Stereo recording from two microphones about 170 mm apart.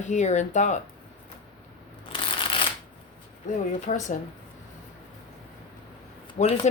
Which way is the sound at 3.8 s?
50° left (ahead or behind).